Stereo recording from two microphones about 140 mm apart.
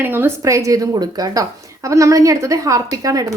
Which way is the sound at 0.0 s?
15° right (ahead or behind).